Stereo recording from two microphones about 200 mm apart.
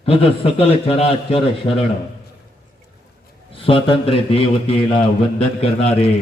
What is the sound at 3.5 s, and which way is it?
A man's voice, 25° left (ahead or behind).